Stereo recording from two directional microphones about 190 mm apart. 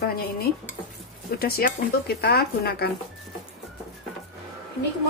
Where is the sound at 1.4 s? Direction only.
55° left (ahead or behind).